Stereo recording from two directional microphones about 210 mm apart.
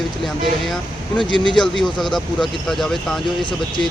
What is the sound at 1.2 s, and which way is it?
Speech, 20° left (ahead or behind).